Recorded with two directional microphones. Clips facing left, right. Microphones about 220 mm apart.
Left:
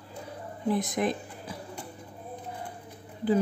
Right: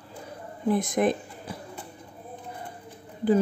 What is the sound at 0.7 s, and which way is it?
Speech, 50° right (ahead or behind).